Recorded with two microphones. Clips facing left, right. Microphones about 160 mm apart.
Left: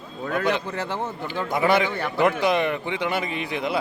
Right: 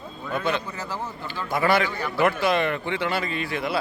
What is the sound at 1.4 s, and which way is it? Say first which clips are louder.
A man's voice: left 1 dB; 20° left (ahead or behind).